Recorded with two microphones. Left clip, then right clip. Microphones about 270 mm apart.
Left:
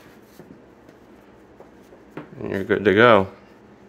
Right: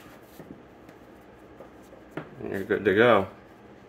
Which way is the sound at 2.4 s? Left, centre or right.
Left.